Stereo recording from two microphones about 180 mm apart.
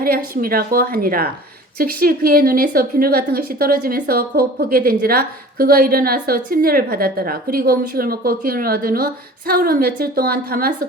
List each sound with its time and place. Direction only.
0.0 s a woman's voice: 55° right (ahead or behind)